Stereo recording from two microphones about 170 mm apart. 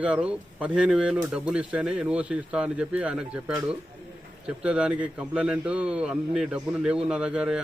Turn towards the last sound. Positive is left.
turn(degrees=-5)  # may be behind; listen again after turning